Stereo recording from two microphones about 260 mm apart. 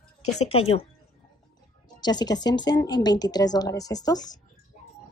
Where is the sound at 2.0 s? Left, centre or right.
Centre.